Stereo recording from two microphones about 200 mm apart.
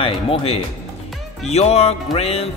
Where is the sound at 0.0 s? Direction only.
30° left (ahead or behind).